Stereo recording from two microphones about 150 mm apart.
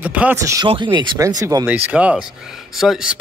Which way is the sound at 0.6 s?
35° right (ahead or behind).